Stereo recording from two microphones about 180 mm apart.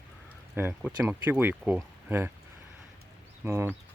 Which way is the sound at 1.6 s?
Centre (ahead or behind).